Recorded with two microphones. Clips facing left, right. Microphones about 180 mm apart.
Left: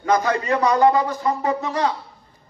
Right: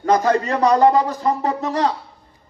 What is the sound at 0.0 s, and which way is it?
A man's voice, 35° right (ahead or behind).